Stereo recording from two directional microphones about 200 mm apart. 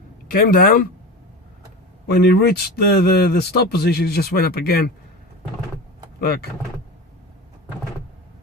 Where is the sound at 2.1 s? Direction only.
55° left (ahead or behind).